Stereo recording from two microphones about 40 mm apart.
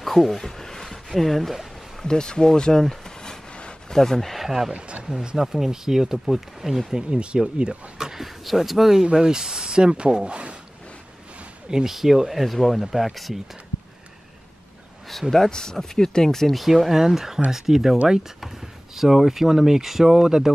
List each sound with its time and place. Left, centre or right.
0.0 s a sound: centre
2.0 s speech: centre
4.4 s speech: centre
4.7 s a sound: right
5.4 s speech: centre
8.0 s a sound: centre
8.5 s speech: centre
9.0 s speech: centre
11.7 s speech: centre
15.3 s speech: centre
16.6 s speech: centre
18.9 s speech: centre